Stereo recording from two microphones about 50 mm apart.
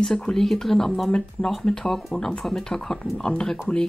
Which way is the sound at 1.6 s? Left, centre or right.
Centre.